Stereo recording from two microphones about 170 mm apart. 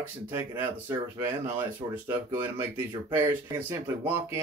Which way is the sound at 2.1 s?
15° right (ahead or behind).